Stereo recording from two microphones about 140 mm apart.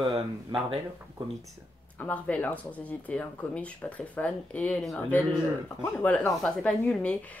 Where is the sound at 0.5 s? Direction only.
35° right (ahead or behind).